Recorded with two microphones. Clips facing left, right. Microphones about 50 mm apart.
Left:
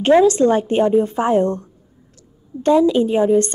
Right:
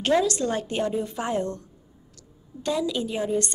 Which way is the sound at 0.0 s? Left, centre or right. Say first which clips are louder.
Left 10 dB; left.